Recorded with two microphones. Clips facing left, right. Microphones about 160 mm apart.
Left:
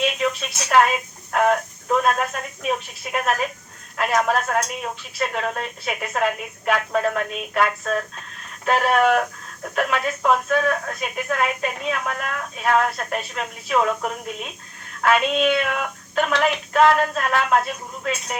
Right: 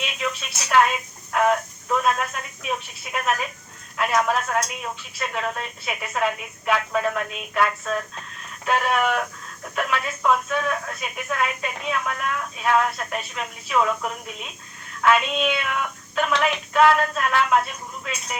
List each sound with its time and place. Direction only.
0.7 s speech: 40° left (ahead or behind)